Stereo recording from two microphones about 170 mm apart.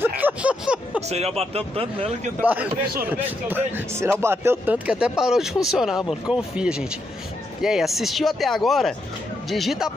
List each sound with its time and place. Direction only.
0.2 s a sound: 10° right (ahead or behind)
1.0 s speech: 40° right (ahead or behind)
2.4 s speech: 10° right (ahead or behind)